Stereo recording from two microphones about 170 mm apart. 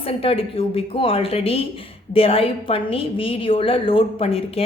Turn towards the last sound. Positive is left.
turn(degrees=35)  # may be behind; listen again after turning